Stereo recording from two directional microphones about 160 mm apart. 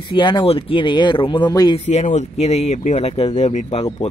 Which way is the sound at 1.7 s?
45° left (ahead or behind).